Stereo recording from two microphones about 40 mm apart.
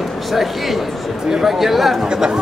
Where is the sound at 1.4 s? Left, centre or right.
Centre.